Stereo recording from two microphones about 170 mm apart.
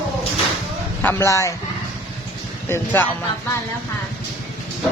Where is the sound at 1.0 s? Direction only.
15° left (ahead or behind).